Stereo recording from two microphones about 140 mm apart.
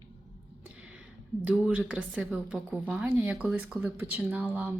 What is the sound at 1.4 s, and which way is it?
Speech, 10° right (ahead or behind).